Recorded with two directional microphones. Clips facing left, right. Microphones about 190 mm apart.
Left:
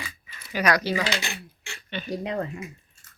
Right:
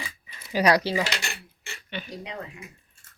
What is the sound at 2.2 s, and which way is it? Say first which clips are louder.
Speech: left 8 dB; 50° left (ahead or behind).